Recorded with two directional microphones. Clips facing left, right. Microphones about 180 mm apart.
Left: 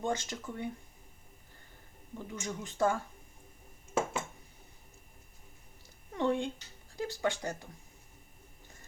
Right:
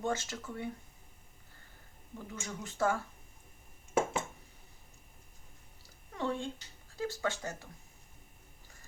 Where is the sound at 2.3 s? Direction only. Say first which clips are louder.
Left 3 dB; 15° left (ahead or behind).